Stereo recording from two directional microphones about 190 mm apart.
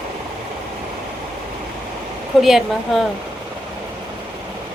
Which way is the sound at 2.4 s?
Centre (ahead or behind).